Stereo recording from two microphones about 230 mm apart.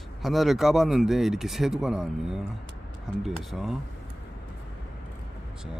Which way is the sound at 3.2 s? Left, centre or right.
Centre.